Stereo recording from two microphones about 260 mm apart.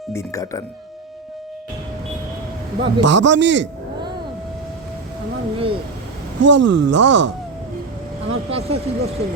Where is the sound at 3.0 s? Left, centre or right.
Right.